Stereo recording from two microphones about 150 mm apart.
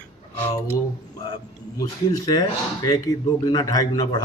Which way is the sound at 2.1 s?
25° left (ahead or behind).